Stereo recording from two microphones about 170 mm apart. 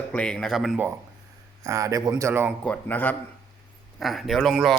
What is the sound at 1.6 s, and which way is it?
Speech, 20° right (ahead or behind).